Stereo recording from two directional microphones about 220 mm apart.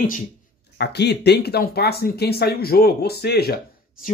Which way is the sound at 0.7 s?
50° left (ahead or behind).